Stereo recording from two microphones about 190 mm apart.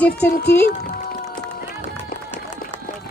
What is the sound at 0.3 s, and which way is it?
Speech, 55° left (ahead or behind).